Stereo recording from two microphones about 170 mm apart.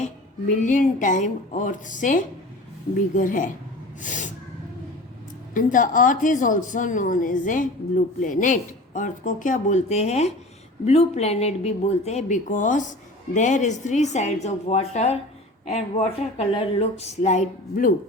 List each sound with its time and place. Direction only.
0.5 s a woman's voice: 50° left (ahead or behind)
4.0 s a sound: 50° left (ahead or behind)
5.5 s a woman's voice: 50° left (ahead or behind)